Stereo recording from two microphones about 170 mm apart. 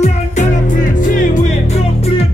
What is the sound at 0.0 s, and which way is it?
Music, 45° left (ahead or behind).